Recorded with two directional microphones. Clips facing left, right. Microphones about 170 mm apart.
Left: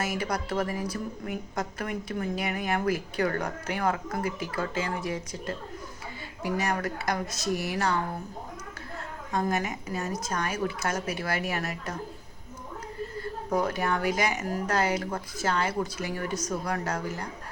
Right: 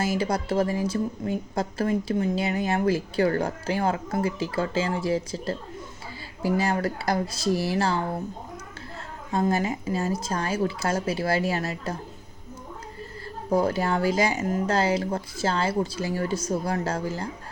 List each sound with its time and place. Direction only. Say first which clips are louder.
0.0 s a woman's voice: right 5 dB; 25° right (ahead or behind)
9.3 s a woman's voice: right 4 dB; 30° right (ahead or behind)
13.5 s a woman's voice: right 4 dB; 30° right (ahead or behind)